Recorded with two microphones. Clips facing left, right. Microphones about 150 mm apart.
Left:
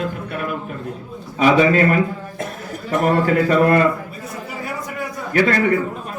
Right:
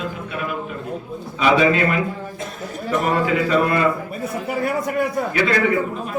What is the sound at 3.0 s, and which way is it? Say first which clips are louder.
Speech: left 4 dB; 50° left (ahead or behind).